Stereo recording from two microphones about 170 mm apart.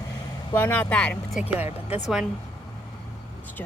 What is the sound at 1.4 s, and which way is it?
Speech, 10° right (ahead or behind).